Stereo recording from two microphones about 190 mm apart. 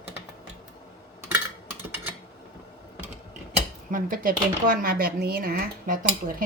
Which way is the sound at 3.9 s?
45° right (ahead or behind).